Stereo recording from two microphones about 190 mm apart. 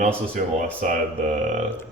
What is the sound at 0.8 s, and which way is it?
Speech, 40° right (ahead or behind).